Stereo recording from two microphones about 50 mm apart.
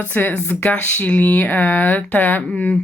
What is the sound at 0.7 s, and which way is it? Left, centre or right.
A woman's voice, left.